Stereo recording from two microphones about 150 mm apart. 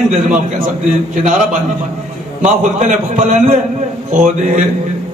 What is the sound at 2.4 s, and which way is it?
A man's voice, 55° right (ahead or behind).